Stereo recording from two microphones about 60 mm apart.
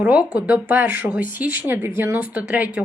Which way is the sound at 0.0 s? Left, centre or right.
Right.